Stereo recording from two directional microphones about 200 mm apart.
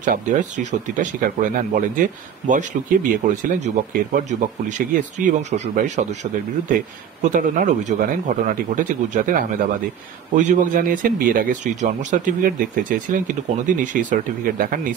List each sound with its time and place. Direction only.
0.0 s speech: 40° right (ahead or behind)
7.2 s speech: 40° right (ahead or behind)